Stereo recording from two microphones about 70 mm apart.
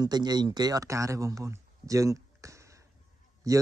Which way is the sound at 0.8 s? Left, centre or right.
Right.